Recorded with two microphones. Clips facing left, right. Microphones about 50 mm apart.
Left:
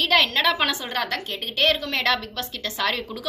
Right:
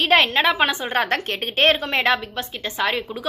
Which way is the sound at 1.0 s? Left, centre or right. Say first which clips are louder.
Right 5 dB; right.